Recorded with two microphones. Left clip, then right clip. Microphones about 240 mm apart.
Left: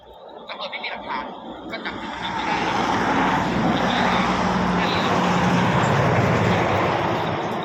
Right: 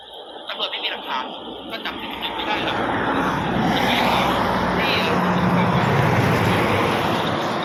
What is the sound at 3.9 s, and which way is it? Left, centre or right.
Speech, right.